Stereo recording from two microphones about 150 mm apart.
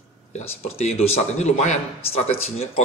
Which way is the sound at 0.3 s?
45° left (ahead or behind).